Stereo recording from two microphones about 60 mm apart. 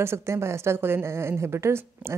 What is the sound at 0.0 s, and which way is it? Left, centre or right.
A woman's voice, right.